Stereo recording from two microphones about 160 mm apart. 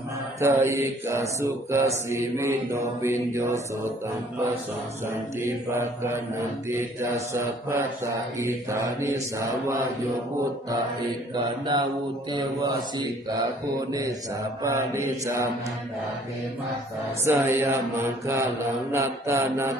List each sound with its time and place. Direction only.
0.4 s mantra: 15° right (ahead or behind)
5.4 s mantra: 15° right (ahead or behind)
11.3 s mantra: 25° right (ahead or behind)
14.6 s mantra: 20° right (ahead or behind)
17.2 s mantra: 15° right (ahead or behind)